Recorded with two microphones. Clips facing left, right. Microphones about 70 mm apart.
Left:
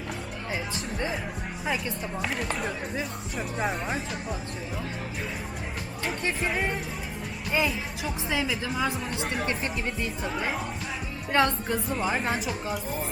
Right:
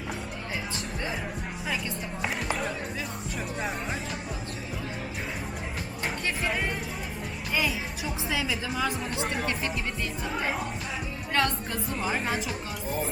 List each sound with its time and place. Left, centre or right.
2.2 s speech: centre
3.7 s speech: centre
6.4 s a woman's voice: centre
7.5 s music: centre
8.4 s a woman's voice: centre
9.2 s speech: centre
11.3 s speech: centre
11.9 s speech: centre